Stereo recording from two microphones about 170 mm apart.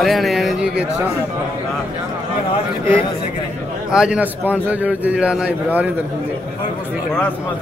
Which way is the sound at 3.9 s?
5° right (ahead or behind).